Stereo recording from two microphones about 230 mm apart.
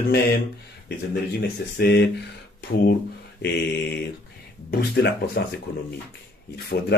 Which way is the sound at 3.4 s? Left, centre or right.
Left.